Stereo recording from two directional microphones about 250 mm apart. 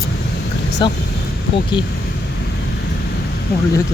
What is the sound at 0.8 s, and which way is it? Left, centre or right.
Speech, centre.